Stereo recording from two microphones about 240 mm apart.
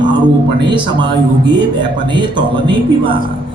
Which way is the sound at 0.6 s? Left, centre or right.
Centre.